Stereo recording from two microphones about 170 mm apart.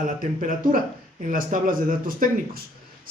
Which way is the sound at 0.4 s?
55° right (ahead or behind).